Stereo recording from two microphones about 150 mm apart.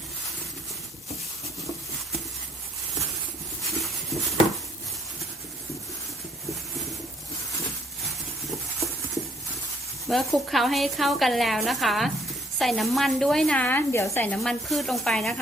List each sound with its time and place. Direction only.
3.6 s a sound: centre (ahead or behind)
10.1 s a woman's voice: centre (ahead or behind); by 14.3 s 15° left (ahead or behind)
14.4 s a woman's voice: centre (ahead or behind)